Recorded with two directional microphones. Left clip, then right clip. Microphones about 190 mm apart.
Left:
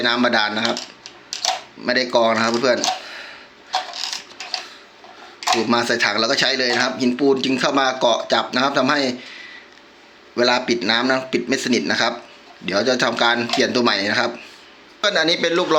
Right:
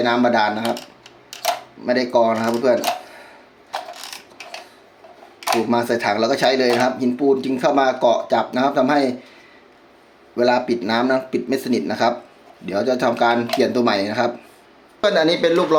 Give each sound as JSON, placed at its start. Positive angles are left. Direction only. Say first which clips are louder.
{"t": 0.0, "sound": "speech", "louder": "right 1 dB", "side_deg": -5}
{"t": 1.8, "sound": "speech", "louder": "even", "side_deg": -5}
{"t": 5.6, "sound": "speech", "louder": "left 1 dB", "side_deg": -10}
{"t": 10.3, "sound": "speech", "louder": "even", "side_deg": -10}